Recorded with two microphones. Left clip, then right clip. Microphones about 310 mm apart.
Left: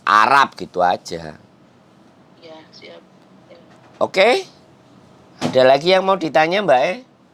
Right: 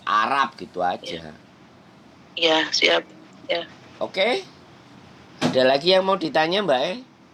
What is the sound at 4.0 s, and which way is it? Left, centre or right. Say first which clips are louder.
Speech: left 8 dB; left.